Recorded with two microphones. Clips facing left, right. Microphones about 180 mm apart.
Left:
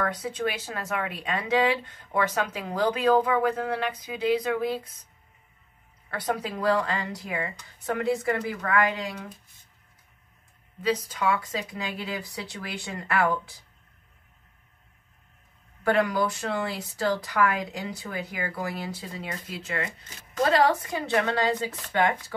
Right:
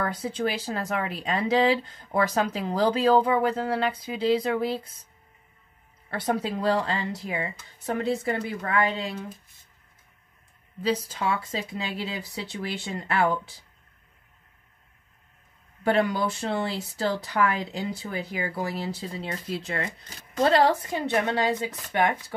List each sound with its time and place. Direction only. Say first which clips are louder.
0.0 s speech: right 1 dB; 30° right (ahead or behind)
6.0 s speech: right 3 dB; 25° right (ahead or behind)
10.8 s speech: even; 30° right (ahead or behind)
15.8 s speech: even; 25° right (ahead or behind)
21.1 s speech: even; 20° right (ahead or behind)